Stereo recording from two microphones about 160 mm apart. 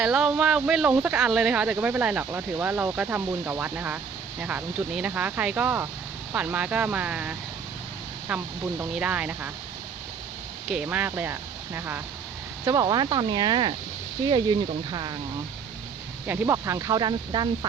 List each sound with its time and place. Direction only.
0.0 s speech: 5° right (ahead or behind)
10.7 s speech: 5° right (ahead or behind); by 14.5 s 25° right (ahead or behind)
16.2 s speech: 10° right (ahead or behind); by 17.7 s 30° right (ahead or behind)